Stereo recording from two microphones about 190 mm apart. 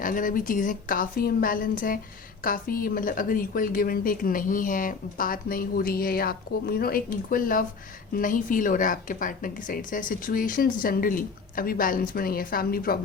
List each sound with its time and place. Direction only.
0.0 s a woman's voice: 45° left (ahead or behind)